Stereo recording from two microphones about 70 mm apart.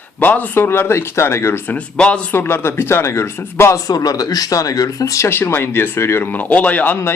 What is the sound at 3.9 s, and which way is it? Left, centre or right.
Speech, left.